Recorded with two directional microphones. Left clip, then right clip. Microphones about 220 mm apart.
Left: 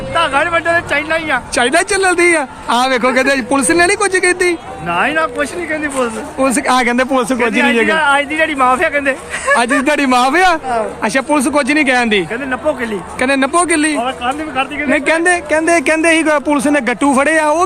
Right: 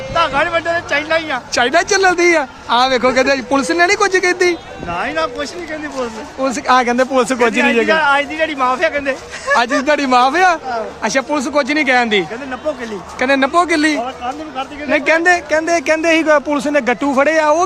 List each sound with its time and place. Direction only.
0.1 s speech: 5° right (ahead or behind)
1.5 s speech: 5° left (ahead or behind)
6.4 s speech: 10° left (ahead or behind); by 9.6 s 5° right (ahead or behind)
9.8 s speech: 10° left (ahead or behind)